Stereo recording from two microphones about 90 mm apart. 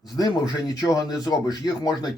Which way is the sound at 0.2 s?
45° left (ahead or behind).